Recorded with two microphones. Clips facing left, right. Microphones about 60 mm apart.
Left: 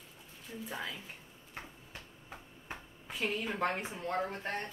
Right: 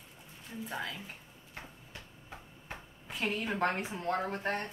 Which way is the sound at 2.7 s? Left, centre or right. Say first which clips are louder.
Even; centre.